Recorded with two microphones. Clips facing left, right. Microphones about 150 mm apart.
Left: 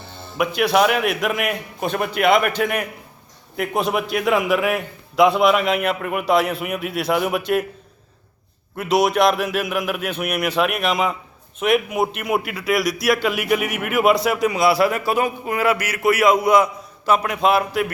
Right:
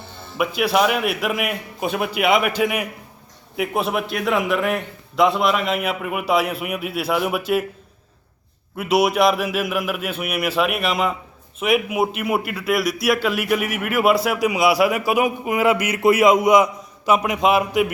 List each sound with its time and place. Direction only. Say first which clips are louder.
0.3 s a man's voice: left 1 dB; 5° right (ahead or behind)
8.7 s a man's voice: even; 5° right (ahead or behind)